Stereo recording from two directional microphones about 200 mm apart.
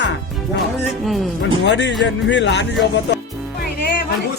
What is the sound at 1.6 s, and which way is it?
Speech, 60° left (ahead or behind).